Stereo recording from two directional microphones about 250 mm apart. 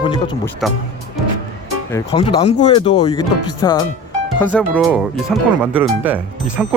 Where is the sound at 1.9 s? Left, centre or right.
Centre.